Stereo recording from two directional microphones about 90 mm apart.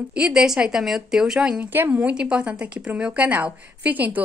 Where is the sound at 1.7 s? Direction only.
20° right (ahead or behind).